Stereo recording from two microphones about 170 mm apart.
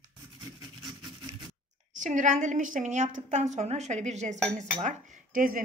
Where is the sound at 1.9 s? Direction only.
45° right (ahead or behind).